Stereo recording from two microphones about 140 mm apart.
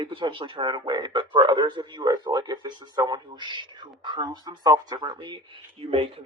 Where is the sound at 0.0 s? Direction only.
35° right (ahead or behind).